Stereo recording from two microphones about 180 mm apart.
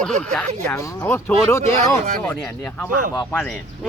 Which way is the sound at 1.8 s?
40° right (ahead or behind).